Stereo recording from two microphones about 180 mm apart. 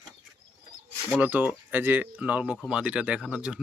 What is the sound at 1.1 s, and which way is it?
Speech, 10° right (ahead or behind).